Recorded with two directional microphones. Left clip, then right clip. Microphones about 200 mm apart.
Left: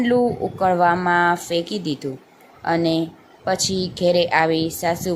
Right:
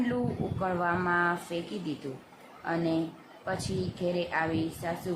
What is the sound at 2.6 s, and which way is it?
Speech, 30° left (ahead or behind).